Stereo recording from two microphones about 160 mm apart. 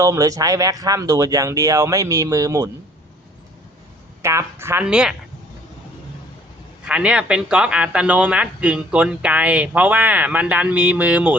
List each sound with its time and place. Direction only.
0.0 s speech: 20° right (ahead or behind)
4.2 s speech: 15° right (ahead or behind)
6.8 s speech: 5° right (ahead or behind)